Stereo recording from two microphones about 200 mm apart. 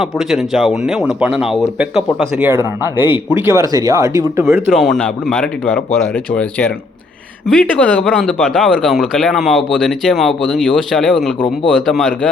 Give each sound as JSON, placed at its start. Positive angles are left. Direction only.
{"t": 0.0, "sound": "speech", "side_deg": 0}
{"t": 11.3, "sound": "speech", "side_deg": 25}
{"t": 11.7, "sound": "speech", "side_deg": 0}